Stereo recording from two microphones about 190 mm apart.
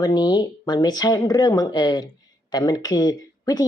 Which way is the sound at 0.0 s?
20° left (ahead or behind).